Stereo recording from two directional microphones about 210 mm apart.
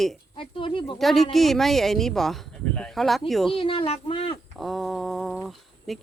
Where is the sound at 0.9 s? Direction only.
Centre (ahead or behind).